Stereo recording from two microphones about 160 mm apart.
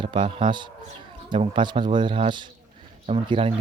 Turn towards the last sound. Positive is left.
turn(degrees=-35)  # may be behind; listen again after turning